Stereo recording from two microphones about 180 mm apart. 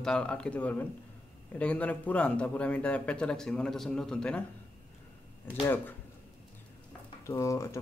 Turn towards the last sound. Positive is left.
turn(degrees=15)  # may be behind; listen again after turning